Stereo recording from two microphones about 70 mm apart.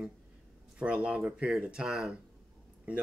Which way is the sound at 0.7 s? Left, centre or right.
Centre.